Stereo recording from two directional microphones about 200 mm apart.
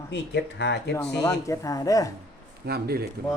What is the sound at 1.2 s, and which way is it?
Speech, 15° left (ahead or behind).